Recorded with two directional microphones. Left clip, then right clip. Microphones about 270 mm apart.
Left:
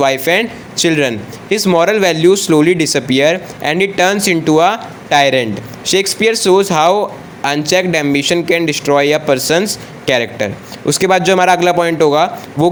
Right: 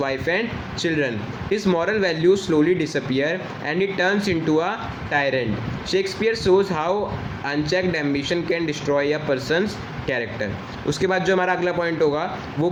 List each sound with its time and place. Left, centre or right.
0.0 s a man's voice: left